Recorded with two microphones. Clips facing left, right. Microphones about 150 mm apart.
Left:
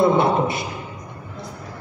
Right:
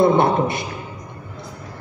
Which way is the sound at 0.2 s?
50° right (ahead or behind).